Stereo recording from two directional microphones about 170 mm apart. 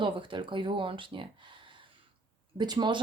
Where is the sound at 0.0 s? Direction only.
30° right (ahead or behind).